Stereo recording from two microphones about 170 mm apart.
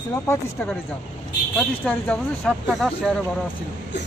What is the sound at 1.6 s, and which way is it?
Speech, 10° left (ahead or behind).